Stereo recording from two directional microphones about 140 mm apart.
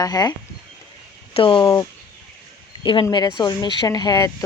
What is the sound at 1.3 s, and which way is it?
Speech, 40° left (ahead or behind).